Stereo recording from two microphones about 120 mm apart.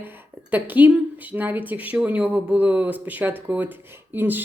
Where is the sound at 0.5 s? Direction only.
15° right (ahead or behind).